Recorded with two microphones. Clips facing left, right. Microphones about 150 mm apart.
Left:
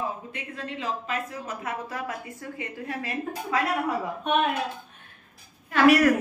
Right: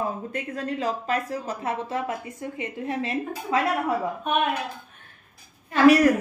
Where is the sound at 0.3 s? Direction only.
40° right (ahead or behind); by 3.2 s 25° right (ahead or behind).